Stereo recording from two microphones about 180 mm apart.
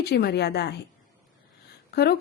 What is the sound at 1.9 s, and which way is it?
Speech, 65° left (ahead or behind).